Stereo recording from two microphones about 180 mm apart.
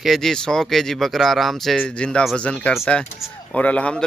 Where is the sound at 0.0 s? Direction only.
Centre (ahead or behind).